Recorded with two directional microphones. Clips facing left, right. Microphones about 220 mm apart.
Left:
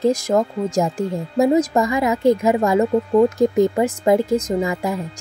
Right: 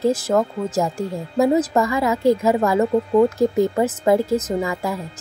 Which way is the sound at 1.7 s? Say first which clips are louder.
Left 1 dB; 20° left (ahead or behind).